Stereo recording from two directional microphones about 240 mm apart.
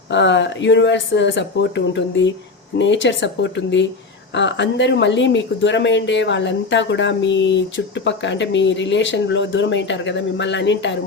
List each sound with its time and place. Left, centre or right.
0.1 s speech: left